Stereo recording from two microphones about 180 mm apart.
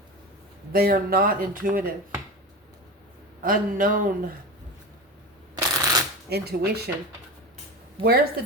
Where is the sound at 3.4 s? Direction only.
50° right (ahead or behind).